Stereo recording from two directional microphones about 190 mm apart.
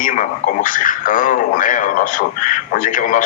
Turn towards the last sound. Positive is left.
turn(degrees=45)  # may be behind; listen again after turning